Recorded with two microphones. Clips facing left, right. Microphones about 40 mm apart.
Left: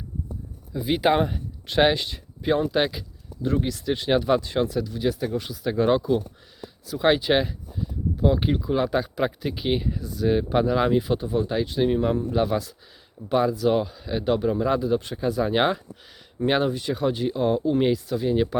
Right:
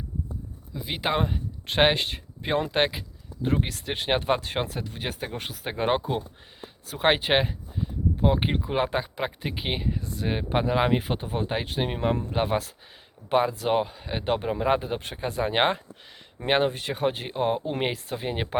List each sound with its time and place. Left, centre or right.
0.7 s speech: centre
1.7 s speech: right
10.9 s speech: right
16.7 s speech: right